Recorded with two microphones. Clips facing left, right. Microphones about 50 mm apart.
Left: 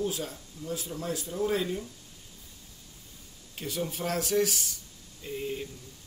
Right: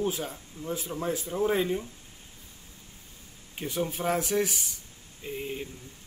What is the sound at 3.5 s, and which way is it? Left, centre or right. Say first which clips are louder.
Speech: right 3 dB; right.